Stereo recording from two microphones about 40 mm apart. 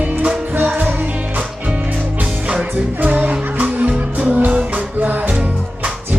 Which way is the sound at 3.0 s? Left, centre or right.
Right.